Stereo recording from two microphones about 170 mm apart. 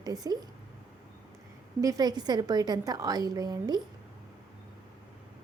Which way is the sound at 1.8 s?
20° right (ahead or behind).